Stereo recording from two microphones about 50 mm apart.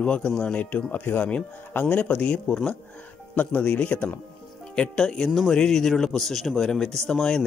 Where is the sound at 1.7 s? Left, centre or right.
Left.